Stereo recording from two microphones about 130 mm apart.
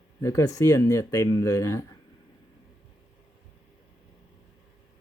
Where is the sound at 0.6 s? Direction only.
25° left (ahead or behind).